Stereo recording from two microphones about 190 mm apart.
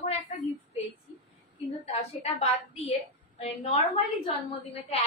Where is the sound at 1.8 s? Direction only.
30° left (ahead or behind).